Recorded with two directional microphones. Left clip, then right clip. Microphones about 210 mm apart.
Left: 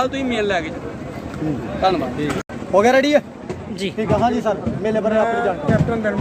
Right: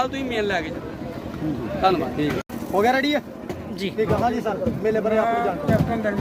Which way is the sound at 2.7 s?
40° left (ahead or behind).